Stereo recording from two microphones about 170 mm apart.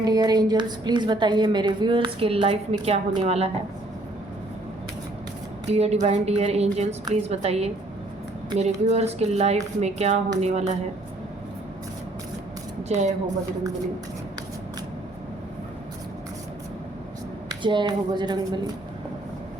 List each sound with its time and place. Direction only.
0.0 s a woman's voice: 25° right (ahead or behind)
5.7 s speech: 40° right (ahead or behind)
12.9 s a woman's voice: 45° right (ahead or behind)
17.5 s a woman's voice: 30° right (ahead or behind)